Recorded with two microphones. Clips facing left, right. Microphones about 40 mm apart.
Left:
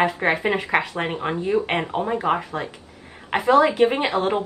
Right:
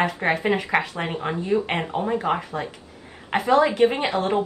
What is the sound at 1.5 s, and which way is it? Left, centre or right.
Speech, left.